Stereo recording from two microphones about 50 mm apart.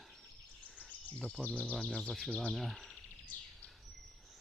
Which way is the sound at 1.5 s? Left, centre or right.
Centre.